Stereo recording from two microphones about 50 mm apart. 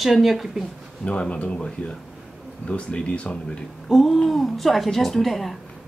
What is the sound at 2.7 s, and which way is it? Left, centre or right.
Speech, left.